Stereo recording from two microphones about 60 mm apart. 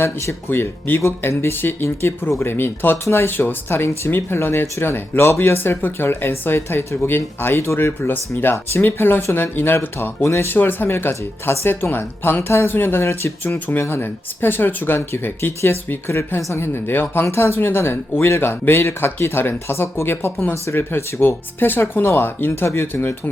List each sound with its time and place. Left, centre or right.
0.0 s speech: left
10.2 s speech: left
10.5 s speech: left
17.2 s speech: left